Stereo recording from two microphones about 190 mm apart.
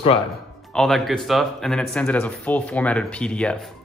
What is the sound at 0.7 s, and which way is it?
Speech, centre (ahead or behind).